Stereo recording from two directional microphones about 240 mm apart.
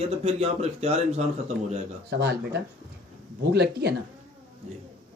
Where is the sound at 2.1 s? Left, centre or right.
Right.